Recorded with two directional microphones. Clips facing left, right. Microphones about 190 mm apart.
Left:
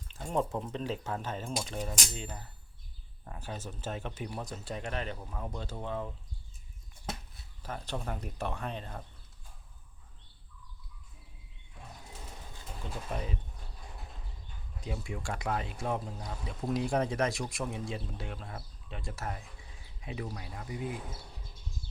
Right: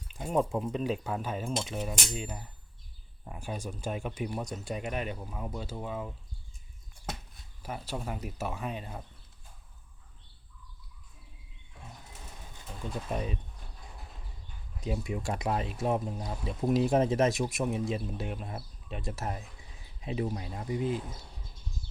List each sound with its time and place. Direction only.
0.1 s speech: 10° right (ahead or behind)
7.6 s speech: 10° right (ahead or behind)
13.1 s speech: 20° right (ahead or behind)
14.8 s speech: 20° right (ahead or behind)